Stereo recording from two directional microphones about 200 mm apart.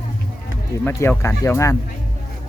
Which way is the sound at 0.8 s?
10° left (ahead or behind).